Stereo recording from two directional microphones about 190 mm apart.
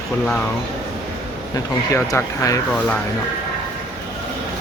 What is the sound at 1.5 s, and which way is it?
Speech, 15° left (ahead or behind).